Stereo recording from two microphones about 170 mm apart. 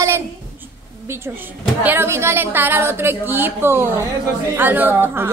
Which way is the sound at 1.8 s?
10° right (ahead or behind).